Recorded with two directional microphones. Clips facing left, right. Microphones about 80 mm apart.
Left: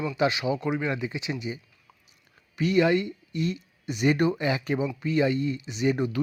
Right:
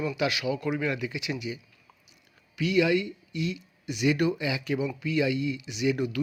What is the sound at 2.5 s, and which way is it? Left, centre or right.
Speech, left.